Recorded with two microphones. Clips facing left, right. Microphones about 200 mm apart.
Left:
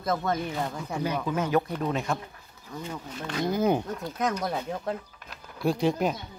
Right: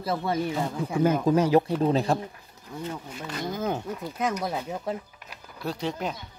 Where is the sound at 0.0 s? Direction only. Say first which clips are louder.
Right 1 dB; 10° right (ahead or behind).